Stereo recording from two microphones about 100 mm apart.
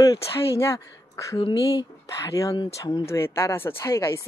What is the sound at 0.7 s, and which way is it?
A woman's voice, 25° left (ahead or behind).